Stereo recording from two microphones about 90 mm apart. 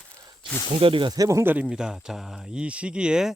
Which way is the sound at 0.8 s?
75° right (ahead or behind).